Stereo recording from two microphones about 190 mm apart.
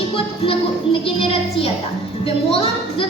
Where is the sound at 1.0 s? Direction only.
30° left (ahead or behind).